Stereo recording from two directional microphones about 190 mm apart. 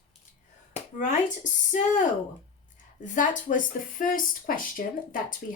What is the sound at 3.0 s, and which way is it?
Speech, 40° left (ahead or behind).